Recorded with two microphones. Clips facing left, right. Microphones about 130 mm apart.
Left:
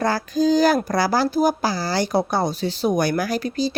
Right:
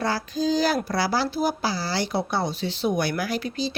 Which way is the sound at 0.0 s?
45° left (ahead or behind).